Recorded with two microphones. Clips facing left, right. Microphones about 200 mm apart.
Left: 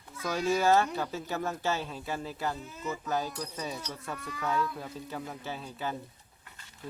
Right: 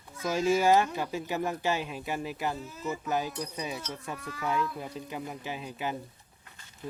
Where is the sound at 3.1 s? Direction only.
20° right (ahead or behind).